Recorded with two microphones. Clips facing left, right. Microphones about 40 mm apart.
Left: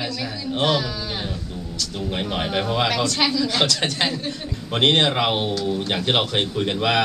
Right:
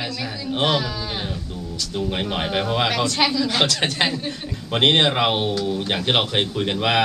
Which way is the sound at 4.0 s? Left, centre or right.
Centre.